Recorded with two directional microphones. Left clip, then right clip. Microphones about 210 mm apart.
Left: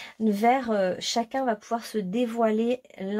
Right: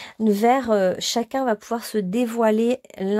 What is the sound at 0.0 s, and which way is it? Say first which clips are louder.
Speech: right 4 dB; 45° right (ahead or behind).